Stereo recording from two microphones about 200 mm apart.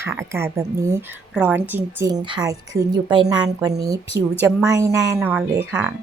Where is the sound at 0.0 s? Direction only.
15° right (ahead or behind).